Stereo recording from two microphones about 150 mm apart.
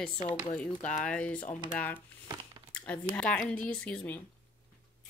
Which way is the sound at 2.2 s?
25° right (ahead or behind).